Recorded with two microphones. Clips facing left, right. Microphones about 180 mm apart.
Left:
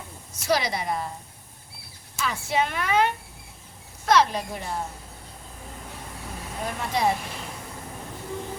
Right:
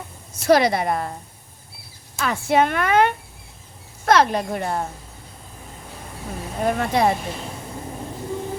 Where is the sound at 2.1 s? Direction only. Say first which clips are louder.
Right 7 dB; 55° right (ahead or behind).